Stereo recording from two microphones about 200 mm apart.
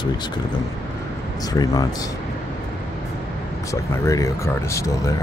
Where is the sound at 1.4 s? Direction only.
20° left (ahead or behind).